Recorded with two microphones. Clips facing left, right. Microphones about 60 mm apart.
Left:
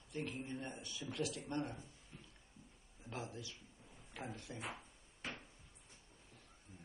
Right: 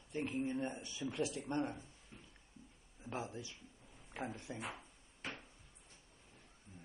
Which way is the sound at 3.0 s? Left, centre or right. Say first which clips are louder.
Right 3 dB; right.